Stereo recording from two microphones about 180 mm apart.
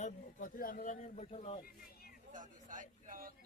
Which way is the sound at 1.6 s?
55° left (ahead or behind).